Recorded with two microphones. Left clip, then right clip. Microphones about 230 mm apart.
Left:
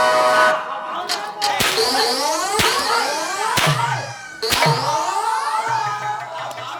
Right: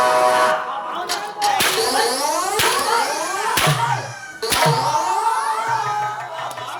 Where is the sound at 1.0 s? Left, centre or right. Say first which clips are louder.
Right 2 dB; centre.